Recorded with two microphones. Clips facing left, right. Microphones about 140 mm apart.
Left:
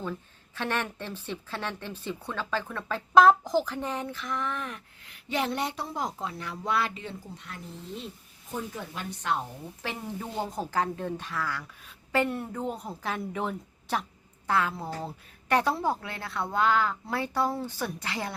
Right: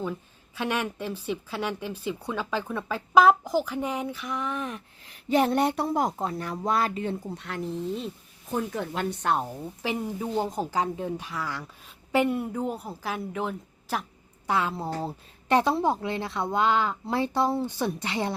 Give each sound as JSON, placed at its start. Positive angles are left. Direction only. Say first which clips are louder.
{"t": 0.0, "sound": "a woman's voice", "louder": "right 3 dB", "side_deg": -10}
{"t": 5.0, "sound": "speech", "louder": "right 7 dB", "side_deg": -40}
{"t": 8.7, "sound": "speech", "louder": "right 8 dB", "side_deg": -65}
{"t": 9.8, "sound": "a woman's voice", "louder": "right 6 dB", "side_deg": -10}
{"t": 14.4, "sound": "a woman's voice", "louder": "right 1 dB", "side_deg": -20}